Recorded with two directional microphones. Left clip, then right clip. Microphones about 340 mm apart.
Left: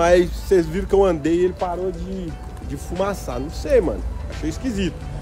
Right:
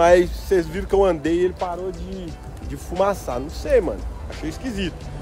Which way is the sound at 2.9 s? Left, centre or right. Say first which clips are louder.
Right 3 dB; centre.